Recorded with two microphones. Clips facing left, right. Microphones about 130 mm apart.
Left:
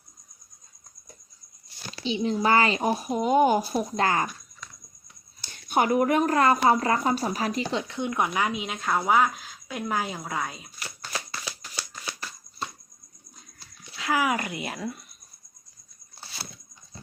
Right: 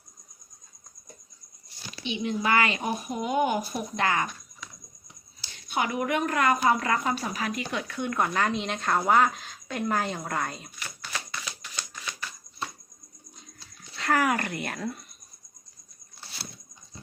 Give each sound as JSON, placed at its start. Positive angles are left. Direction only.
{"t": 1.9, "sound": "speech", "side_deg": 30}
{"t": 4.6, "sound": "a sound", "side_deg": -5}
{"t": 5.4, "sound": "speech", "side_deg": 50}
{"t": 10.8, "sound": "shuffling cards", "side_deg": 35}
{"t": 13.9, "sound": "speech", "side_deg": 5}